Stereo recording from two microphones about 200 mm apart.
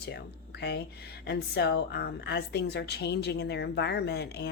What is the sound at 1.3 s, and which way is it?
A woman's voice, 55° left (ahead or behind).